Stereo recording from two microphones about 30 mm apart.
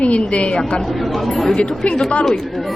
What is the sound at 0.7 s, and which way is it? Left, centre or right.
Speech, centre.